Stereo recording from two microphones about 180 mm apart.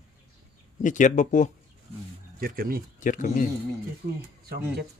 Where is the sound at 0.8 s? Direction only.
45° left (ahead or behind).